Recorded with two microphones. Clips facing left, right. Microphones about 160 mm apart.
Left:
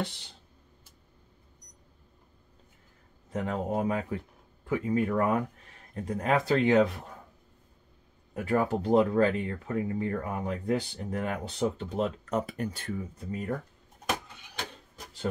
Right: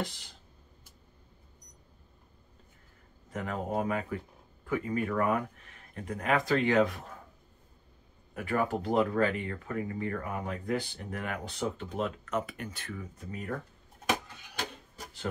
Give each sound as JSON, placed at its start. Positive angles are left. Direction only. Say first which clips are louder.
{"t": 3.3, "sound": "speech", "louder": "left 3 dB", "side_deg": 25}
{"t": 8.4, "sound": "speech", "louder": "left 3 dB", "side_deg": 25}